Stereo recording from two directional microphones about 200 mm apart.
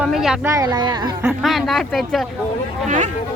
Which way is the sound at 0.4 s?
15° right (ahead or behind).